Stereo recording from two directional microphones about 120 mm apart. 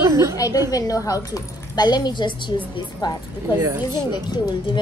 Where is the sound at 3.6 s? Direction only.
25° right (ahead or behind).